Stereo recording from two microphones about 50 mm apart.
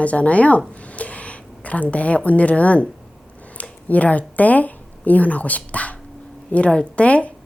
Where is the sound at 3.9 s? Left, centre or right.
Left.